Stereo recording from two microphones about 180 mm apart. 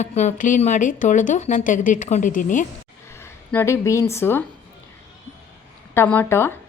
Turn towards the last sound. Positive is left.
turn(degrees=15)  # may be behind; listen again after turning